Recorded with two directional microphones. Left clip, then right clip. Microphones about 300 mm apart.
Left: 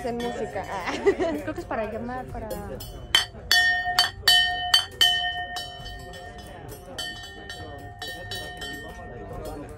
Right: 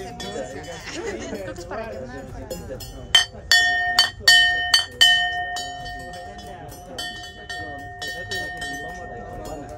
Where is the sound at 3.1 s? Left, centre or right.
Centre.